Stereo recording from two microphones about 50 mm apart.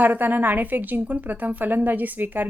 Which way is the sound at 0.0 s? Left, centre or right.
Right.